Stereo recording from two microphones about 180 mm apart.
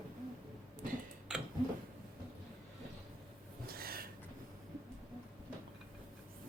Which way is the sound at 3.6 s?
55° right (ahead or behind).